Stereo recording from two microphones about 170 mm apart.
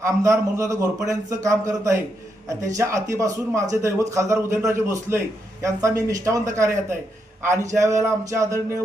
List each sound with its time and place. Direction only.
0.0 s a man's voice: 20° right (ahead or behind)